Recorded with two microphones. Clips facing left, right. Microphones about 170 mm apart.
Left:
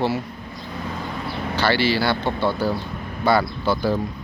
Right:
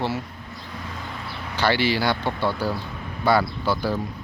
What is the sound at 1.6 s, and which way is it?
Speech, 15° right (ahead or behind).